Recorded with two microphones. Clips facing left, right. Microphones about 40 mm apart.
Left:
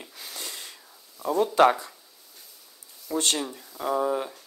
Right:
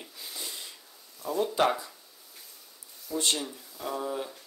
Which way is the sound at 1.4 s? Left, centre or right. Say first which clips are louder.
Left 6 dB; left.